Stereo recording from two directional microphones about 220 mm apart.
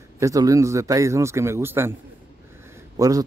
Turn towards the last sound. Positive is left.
turn(degrees=-15)  # may be behind; listen again after turning